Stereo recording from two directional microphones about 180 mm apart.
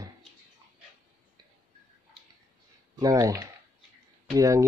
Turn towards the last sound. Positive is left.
turn(degrees=-15)  # may be behind; listen again after turning